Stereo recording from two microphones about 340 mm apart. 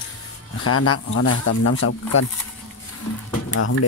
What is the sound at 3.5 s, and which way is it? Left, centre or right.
Speech, left.